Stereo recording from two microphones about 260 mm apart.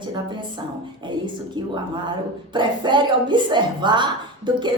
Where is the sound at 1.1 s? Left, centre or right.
Centre.